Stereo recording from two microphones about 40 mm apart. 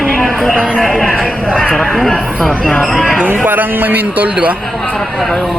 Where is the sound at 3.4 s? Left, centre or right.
Right.